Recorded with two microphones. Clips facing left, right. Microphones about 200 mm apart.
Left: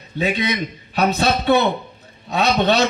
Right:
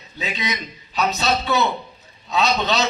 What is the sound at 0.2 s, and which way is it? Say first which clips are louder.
A man's voice: left 7 dB; 60° left (ahead or behind).